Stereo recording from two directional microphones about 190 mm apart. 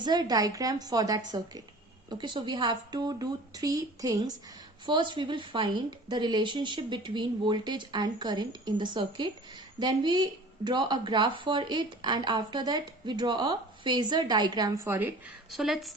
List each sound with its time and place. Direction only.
0.0 s speech: 20° right (ahead or behind)
14.8 s a woman's voice: 10° right (ahead or behind)